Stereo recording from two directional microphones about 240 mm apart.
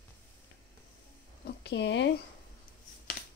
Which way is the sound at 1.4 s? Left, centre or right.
Left.